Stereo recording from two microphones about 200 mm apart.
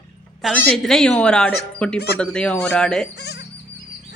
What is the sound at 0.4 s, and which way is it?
Speech, centre (ahead or behind).